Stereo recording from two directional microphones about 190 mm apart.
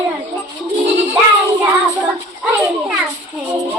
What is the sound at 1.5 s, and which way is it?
Child singing, 15° right (ahead or behind).